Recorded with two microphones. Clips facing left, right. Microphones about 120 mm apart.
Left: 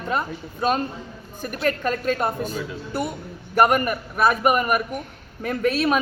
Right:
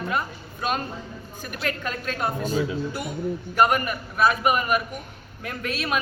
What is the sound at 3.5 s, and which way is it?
A man's voice, 50° left (ahead or behind).